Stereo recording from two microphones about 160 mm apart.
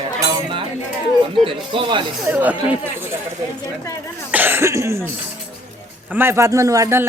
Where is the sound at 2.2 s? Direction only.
10° right (ahead or behind).